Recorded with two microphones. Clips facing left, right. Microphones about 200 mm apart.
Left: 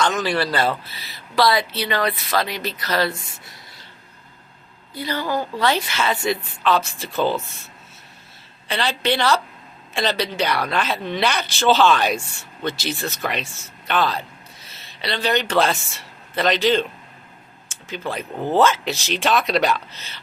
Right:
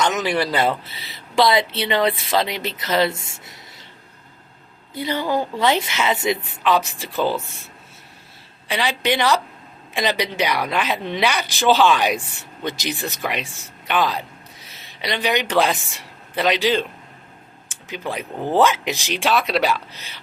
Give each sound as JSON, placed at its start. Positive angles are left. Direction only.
{"t": 0.0, "sound": "speech", "side_deg": -20}
{"t": 4.9, "sound": "speech", "side_deg": -20}
{"t": 8.6, "sound": "a woman's voice", "side_deg": -15}
{"t": 17.8, "sound": "speech", "side_deg": -15}